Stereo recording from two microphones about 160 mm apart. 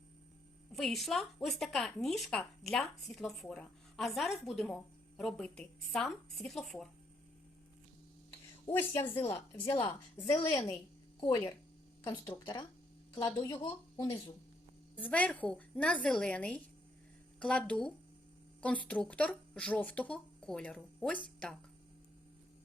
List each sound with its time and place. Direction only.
0.7 s speech: centre (ahead or behind)
8.7 s speech: 15° left (ahead or behind)
9.7 s a woman's voice: 30° left (ahead or behind)
10.2 s a woman's voice: 20° left (ahead or behind)